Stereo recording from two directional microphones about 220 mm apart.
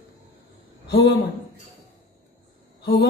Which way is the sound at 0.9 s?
50° left (ahead or behind).